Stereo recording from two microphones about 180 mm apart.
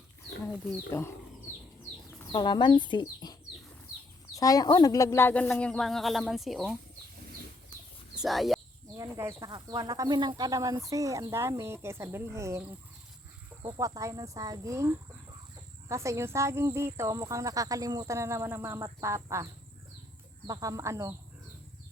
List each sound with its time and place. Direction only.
0.5 s speech: centre (ahead or behind)
2.3 s speech: 25° left (ahead or behind)
4.4 s speech: 20° left (ahead or behind); by 6.6 s centre (ahead or behind)
8.1 s a sound: centre (ahead or behind)
9.0 s a sound: 15° right (ahead or behind)
9.5 s speech: 25° right (ahead or behind)
20.5 s speech: 20° right (ahead or behind)